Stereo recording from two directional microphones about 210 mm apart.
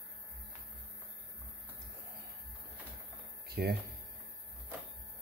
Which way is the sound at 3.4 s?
50° right (ahead or behind).